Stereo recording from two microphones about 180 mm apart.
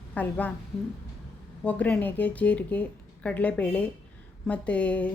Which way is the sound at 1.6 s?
5° left (ahead or behind).